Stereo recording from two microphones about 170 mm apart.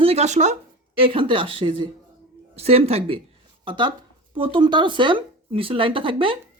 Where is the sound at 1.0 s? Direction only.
30° right (ahead or behind).